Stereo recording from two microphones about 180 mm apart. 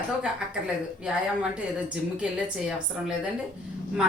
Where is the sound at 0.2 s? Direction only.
5° right (ahead or behind).